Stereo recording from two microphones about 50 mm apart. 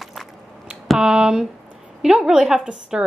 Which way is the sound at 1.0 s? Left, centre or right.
Centre.